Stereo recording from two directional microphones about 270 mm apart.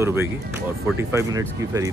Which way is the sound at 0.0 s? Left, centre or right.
Centre.